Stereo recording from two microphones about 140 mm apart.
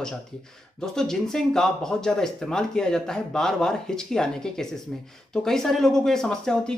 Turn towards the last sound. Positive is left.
turn(degrees=5)  # may be behind; listen again after turning